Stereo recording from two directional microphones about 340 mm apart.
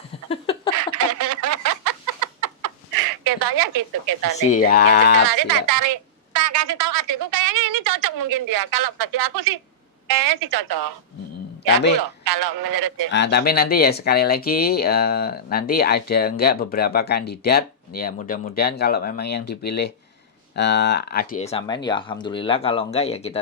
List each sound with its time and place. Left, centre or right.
0.3 s a sound: centre
0.8 s a sound: right
3.2 s a woman's voice: right
4.4 s speech: left
5.2 s a woman's voice: right
12.2 s a woman's voice: right
13.1 s speech: left